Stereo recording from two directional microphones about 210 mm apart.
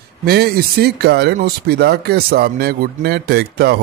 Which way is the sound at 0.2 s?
50° right (ahead or behind).